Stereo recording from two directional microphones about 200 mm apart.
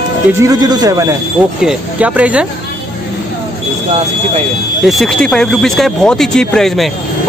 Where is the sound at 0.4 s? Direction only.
20° right (ahead or behind).